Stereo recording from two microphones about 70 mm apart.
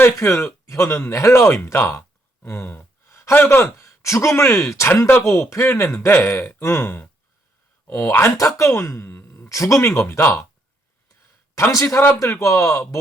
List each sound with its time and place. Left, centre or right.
0.0 s speech: left
3.1 s a sound: left
3.3 s speech: left
9.5 s speech: left
11.7 s speech: left